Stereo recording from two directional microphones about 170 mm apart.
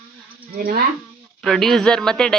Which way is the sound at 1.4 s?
Centre (ahead or behind).